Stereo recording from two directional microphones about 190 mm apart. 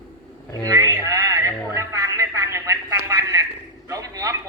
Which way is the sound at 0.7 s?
20° right (ahead or behind).